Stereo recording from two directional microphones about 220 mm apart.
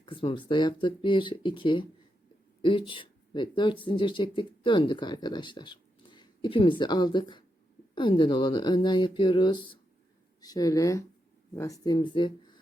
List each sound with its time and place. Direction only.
0.0 s speech: 20° left (ahead or behind)